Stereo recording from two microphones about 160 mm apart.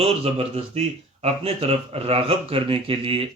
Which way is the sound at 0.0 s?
40° right (ahead or behind).